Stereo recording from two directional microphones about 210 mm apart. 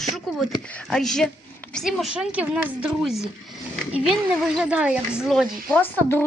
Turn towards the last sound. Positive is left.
turn(degrees=10)  # may be behind; listen again after turning